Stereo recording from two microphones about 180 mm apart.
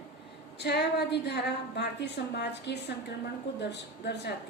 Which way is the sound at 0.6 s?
70° left (ahead or behind).